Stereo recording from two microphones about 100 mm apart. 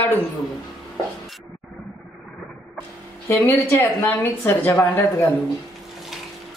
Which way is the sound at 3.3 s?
20° left (ahead or behind).